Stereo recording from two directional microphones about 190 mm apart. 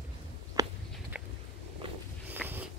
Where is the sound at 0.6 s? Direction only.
20° right (ahead or behind).